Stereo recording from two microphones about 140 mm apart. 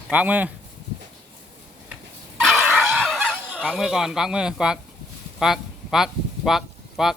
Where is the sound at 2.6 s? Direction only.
10° right (ahead or behind).